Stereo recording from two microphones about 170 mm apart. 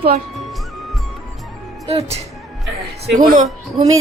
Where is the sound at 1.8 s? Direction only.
35° right (ahead or behind).